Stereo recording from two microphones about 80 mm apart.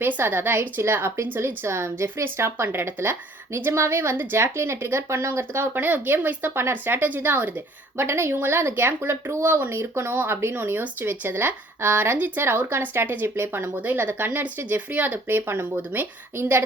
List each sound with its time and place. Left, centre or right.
0.0 s a woman's voice: right